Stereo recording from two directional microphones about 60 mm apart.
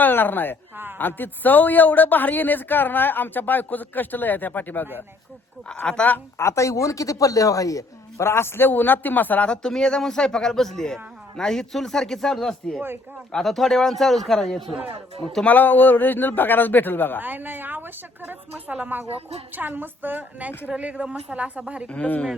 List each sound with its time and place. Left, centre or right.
0.0 s a woman's voice: left
5.8 s a man's voice: centre
6.3 s speech: left
8.2 s speech: left
9.5 s a man's voice: centre
15.4 s speech: left
17.2 s a woman's voice: right
21.8 s speech: left